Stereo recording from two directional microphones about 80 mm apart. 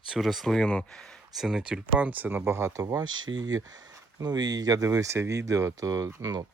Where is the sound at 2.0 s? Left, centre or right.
Right.